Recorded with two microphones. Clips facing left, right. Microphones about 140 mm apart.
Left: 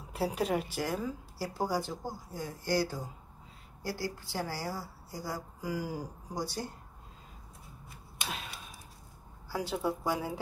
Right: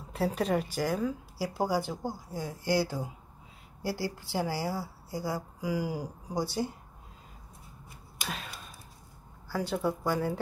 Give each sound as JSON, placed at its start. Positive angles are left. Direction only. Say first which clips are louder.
{"t": 0.1, "sound": "a woman's voice", "louder": "right 2 dB", "side_deg": 5}
{"t": 8.3, "sound": "a sound", "louder": "right 2 dB", "side_deg": 0}
{"t": 9.5, "sound": "a woman's voice", "louder": "right 2 dB", "side_deg": 5}